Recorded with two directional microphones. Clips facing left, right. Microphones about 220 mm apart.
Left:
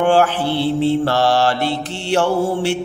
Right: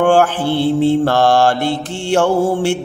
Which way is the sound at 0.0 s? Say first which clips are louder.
Right 2 dB; 50° right (ahead or behind).